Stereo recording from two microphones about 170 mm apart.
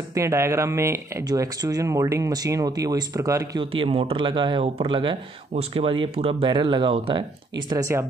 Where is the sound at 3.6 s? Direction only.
30° right (ahead or behind).